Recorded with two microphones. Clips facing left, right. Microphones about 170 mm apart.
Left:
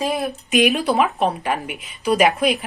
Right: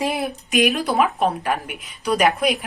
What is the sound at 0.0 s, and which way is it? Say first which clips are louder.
Speech: left 1 dB; 20° right (ahead or behind).